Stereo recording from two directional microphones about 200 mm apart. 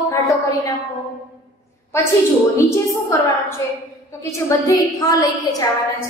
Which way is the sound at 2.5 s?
15° left (ahead or behind).